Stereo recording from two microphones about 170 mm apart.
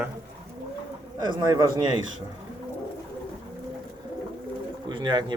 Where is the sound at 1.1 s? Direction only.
25° right (ahead or behind).